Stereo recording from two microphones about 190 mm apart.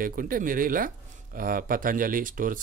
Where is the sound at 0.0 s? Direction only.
45° right (ahead or behind).